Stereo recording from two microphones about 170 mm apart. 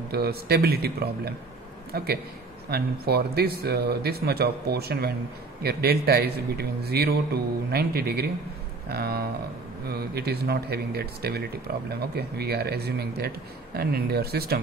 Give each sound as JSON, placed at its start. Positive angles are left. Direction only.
{"t": 0.1, "sound": "a man's voice", "side_deg": -65}